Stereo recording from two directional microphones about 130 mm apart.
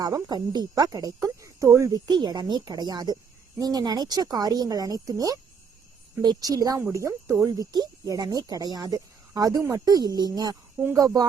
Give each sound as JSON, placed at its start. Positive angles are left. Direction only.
{"t": 0.0, "sound": "speech", "side_deg": -30}